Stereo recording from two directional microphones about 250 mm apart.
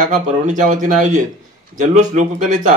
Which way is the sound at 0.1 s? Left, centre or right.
Right.